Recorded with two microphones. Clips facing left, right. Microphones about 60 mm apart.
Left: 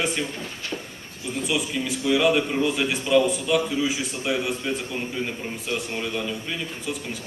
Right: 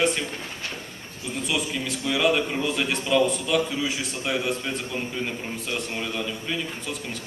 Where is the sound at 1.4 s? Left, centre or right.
Centre.